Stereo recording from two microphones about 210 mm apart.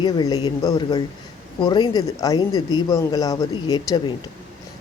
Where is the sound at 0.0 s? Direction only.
20° left (ahead or behind).